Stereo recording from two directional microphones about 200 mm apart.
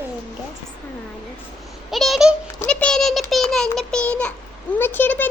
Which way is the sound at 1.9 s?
Centre (ahead or behind).